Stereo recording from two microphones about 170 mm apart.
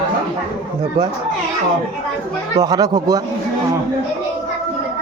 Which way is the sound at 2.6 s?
25° right (ahead or behind).